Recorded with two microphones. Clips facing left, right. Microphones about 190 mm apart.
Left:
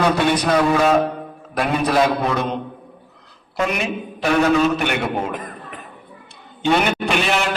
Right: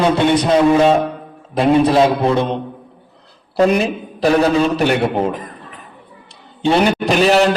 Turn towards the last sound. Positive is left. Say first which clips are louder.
# right 8 dB
turn(degrees=-35)  # may be behind; listen again after turning